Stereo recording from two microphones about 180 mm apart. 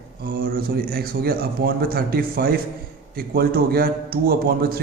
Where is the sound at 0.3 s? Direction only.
55° right (ahead or behind).